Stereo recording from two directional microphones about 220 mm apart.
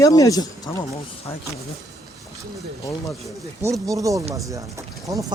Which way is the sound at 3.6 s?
15° right (ahead or behind).